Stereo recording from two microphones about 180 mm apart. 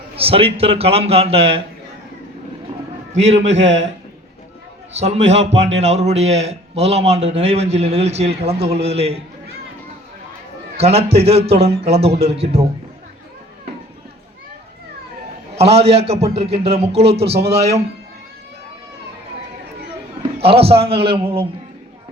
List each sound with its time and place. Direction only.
0.2 s a man's voice: 30° right (ahead or behind)
3.2 s a man's voice: 35° right (ahead or behind)
4.9 s a man's voice: 35° right (ahead or behind)
10.8 s a man's voice: 35° right (ahead or behind)
15.5 s a man's voice: 35° right (ahead or behind)
20.5 s a man's voice: 30° right (ahead or behind)